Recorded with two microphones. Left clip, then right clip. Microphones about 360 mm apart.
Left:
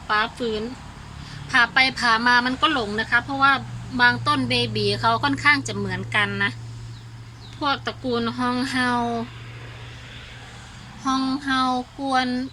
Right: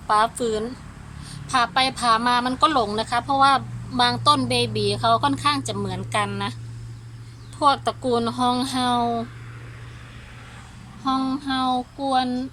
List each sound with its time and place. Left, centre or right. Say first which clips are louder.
0.1 s a woman's voice: right 3 dB; centre
7.6 s a woman's voice: right 5 dB; centre
11.1 s a woman's voice: left 1 dB; centre